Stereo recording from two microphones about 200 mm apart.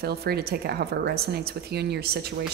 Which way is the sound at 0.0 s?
50° right (ahead or behind).